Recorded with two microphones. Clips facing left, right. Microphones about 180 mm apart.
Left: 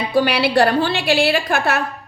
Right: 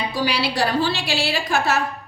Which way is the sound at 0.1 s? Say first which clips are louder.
Left 7 dB; 60° left (ahead or behind).